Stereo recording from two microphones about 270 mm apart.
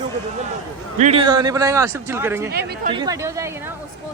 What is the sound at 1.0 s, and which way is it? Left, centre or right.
Speech, right.